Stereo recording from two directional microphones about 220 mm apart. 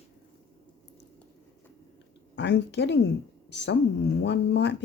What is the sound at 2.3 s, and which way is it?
Speech, 50° left (ahead or behind).